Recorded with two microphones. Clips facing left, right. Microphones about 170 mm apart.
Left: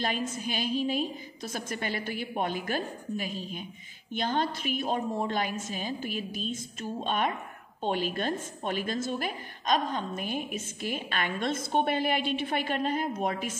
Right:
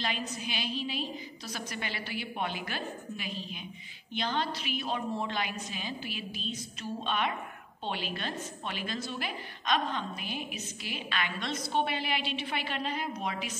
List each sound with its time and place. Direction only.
0.0 s a woman's voice: 50° left (ahead or behind)